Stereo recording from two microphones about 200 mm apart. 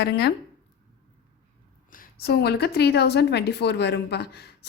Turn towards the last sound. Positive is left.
turn(degrees=55)  # may be behind; listen again after turning